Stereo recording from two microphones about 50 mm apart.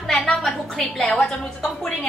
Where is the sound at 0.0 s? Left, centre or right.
Centre.